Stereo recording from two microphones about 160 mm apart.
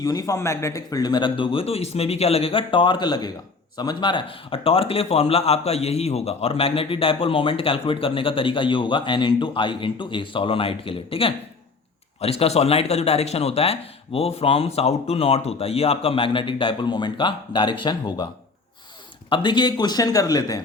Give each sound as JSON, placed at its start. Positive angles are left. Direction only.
{"t": 0.0, "sound": "a man's voice", "side_deg": 20}
{"t": 19.3, "sound": "speech", "side_deg": 30}